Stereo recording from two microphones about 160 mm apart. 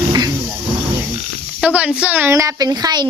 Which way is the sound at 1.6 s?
10° right (ahead or behind).